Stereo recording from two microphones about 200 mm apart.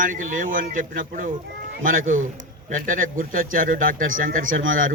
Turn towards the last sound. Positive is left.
turn(degrees=-45)  # may be behind; listen again after turning